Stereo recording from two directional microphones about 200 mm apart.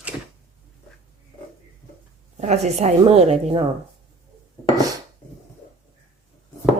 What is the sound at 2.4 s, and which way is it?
A woman's voice, 35° right (ahead or behind).